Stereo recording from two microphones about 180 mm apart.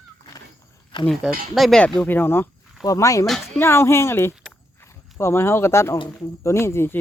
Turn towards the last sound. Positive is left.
turn(degrees=15)  # may be behind; listen again after turning